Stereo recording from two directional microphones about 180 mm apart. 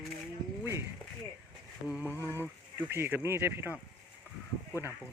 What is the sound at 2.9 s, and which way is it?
Speech, 10° right (ahead or behind).